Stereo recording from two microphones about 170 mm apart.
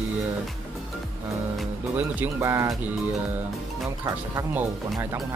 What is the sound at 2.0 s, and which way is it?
Speech, 15° right (ahead or behind).